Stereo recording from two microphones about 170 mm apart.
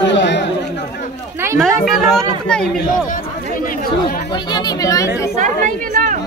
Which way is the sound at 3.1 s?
55° left (ahead or behind).